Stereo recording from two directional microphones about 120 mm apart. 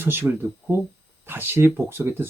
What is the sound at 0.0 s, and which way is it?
Speech, 20° right (ahead or behind).